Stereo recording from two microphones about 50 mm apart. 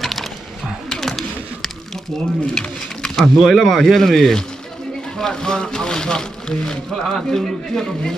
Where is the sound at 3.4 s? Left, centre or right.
Centre.